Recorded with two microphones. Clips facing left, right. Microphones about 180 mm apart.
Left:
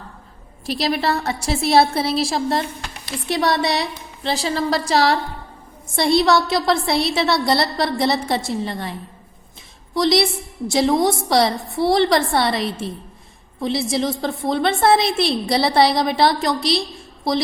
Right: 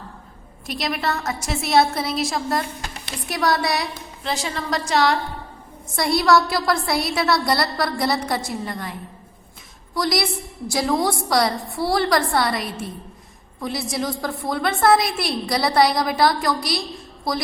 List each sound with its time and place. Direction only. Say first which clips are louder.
0.7 s a woman's voice: left 4 dB; 30° left (ahead or behind)